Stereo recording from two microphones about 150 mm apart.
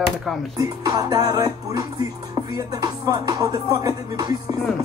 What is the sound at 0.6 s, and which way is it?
Music, 25° right (ahead or behind).